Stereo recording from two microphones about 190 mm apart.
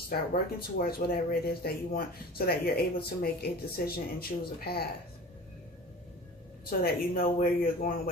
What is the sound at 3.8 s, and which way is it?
Speech, 55° left (ahead or behind).